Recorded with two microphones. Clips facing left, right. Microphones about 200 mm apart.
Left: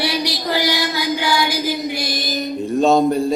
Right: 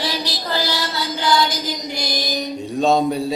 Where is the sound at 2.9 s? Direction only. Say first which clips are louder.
Left 3 dB; centre (ahead or behind).